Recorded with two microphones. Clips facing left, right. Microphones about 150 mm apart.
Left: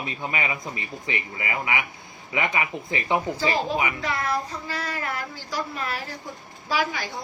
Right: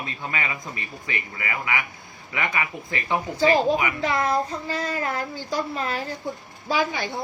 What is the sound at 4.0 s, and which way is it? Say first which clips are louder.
Child singing: right 4 dB; 30° right (ahead or behind).